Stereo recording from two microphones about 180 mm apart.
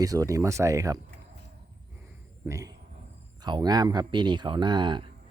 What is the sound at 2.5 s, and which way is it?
Speech, 15° right (ahead or behind).